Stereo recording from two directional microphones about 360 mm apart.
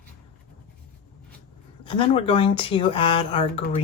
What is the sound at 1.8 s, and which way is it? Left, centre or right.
Speech, centre.